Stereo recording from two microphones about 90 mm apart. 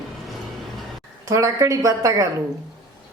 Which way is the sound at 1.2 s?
35° right (ahead or behind).